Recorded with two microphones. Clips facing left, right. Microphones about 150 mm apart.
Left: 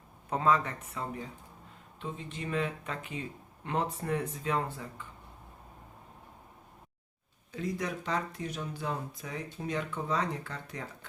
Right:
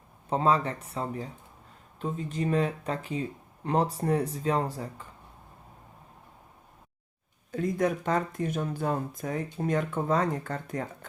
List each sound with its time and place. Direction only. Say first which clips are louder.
0.3 s speech: right 3 dB; 30° right (ahead or behind)
7.5 s speech: right 7 dB; 50° right (ahead or behind)